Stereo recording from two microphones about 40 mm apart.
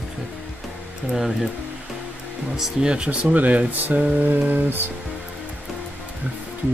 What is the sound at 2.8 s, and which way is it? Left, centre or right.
Speech, right.